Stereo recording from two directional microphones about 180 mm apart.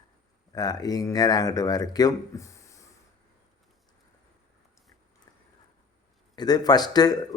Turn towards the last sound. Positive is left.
turn(degrees=20)  # may be behind; listen again after turning